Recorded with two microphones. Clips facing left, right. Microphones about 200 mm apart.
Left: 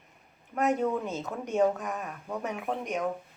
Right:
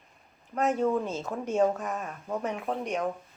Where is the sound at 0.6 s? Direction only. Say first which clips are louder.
Right 1 dB; 20° left (ahead or behind).